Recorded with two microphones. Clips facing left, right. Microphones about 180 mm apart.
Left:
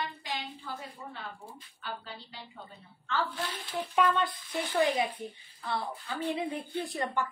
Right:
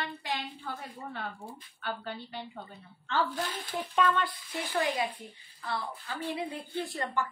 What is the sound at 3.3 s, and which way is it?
Speech, 45° right (ahead or behind).